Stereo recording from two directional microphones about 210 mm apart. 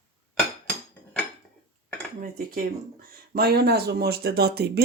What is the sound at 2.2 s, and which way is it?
Speech, 40° right (ahead or behind).